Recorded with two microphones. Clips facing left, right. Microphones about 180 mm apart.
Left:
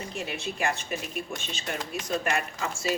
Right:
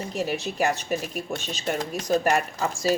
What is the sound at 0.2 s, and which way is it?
Speech, 40° right (ahead or behind).